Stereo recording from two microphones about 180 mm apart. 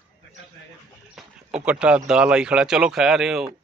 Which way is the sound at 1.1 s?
5° right (ahead or behind).